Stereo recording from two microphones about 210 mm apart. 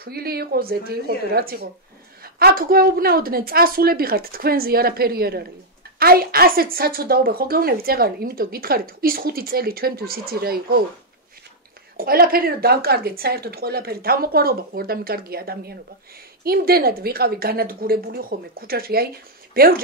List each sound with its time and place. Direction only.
0.0 s a woman's voice: 45° right (ahead or behind)
12.0 s a woman's voice: 45° right (ahead or behind)